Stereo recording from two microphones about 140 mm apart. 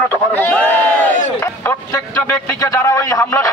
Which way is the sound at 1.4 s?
20° left (ahead or behind).